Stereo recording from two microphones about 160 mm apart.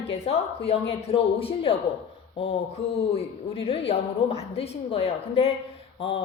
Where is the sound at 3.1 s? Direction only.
35° left (ahead or behind).